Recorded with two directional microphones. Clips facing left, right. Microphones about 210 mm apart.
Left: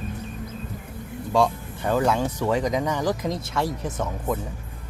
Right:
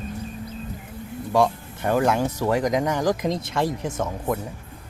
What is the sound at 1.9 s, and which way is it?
Speech, 15° right (ahead or behind).